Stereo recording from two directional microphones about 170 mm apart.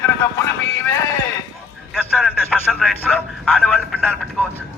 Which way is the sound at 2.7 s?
Centre (ahead or behind).